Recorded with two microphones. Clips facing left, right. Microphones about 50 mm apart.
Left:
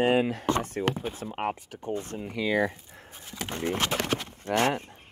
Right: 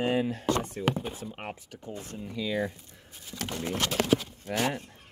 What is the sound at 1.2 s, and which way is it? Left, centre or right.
Speech, left.